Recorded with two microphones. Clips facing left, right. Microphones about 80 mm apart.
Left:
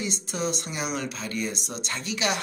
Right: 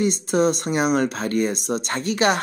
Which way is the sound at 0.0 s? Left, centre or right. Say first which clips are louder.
Right 11 dB; right.